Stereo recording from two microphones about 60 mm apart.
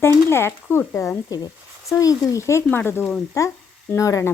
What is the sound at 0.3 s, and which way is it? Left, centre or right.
Speech, left.